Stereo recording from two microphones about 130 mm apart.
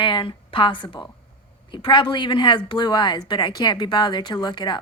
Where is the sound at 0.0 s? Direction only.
40° left (ahead or behind).